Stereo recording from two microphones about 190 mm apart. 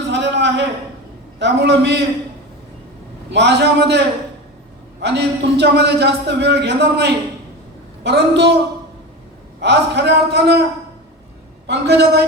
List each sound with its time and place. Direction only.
0.1 s a sound: 65° right (ahead or behind)
1.4 s a man's voice: 65° right (ahead or behind)
3.3 s a man's voice: 65° right (ahead or behind)
9.6 s a man's voice: 65° right (ahead or behind)
11.6 s a man's voice: 60° right (ahead or behind)